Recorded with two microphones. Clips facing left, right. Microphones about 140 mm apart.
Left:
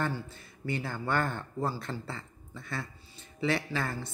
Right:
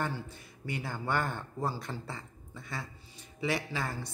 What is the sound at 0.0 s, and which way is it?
Speech, 15° right (ahead or behind).